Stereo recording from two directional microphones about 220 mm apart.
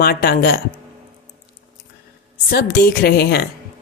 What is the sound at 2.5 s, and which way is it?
Speech, 45° left (ahead or behind).